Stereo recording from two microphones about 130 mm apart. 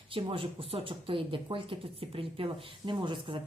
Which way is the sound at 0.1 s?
45° right (ahead or behind).